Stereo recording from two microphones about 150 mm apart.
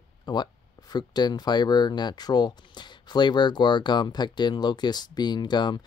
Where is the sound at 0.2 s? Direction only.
30° left (ahead or behind).